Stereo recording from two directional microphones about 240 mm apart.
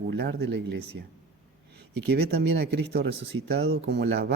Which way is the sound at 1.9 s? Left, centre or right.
Right.